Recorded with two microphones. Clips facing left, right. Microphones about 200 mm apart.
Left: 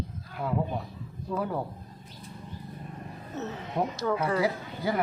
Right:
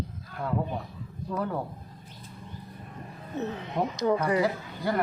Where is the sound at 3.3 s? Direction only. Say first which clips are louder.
Right 2 dB; 15° right (ahead or behind).